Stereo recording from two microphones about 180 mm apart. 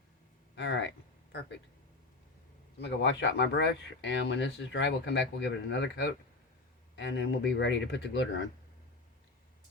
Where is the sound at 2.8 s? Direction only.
80° left.